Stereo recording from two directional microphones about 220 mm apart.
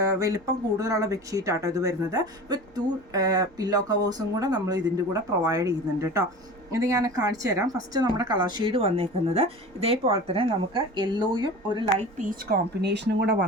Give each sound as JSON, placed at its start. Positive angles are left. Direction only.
{"t": 0.2, "sound": "a woman's voice", "side_deg": -15}
{"t": 12.1, "sound": "speech", "side_deg": -45}